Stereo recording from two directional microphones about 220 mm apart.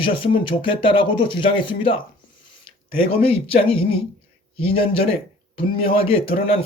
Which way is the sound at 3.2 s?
25° left (ahead or behind).